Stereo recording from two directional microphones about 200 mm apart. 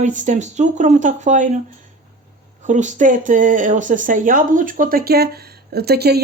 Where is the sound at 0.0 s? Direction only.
40° right (ahead or behind).